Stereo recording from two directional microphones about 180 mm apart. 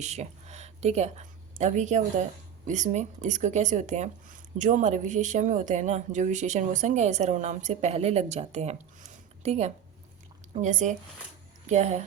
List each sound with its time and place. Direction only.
0.0 s a woman's voice: 40° right (ahead or behind)